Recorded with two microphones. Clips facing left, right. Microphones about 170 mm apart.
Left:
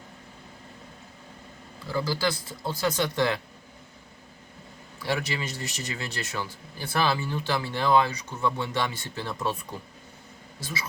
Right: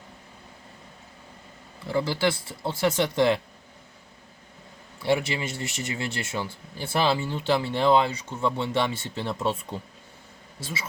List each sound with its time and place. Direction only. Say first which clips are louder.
1.9 s speech: right 3 dB; 25° right (ahead or behind)
4.9 s speech: right 5 dB; 25° right (ahead or behind)
10.6 s speech: right 1 dB; 25° right (ahead or behind)